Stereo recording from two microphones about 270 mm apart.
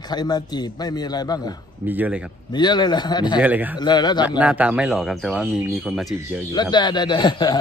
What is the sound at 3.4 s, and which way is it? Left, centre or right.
Speech, centre.